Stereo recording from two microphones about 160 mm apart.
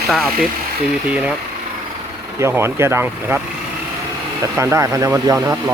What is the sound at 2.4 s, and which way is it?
Speech, 15° right (ahead or behind).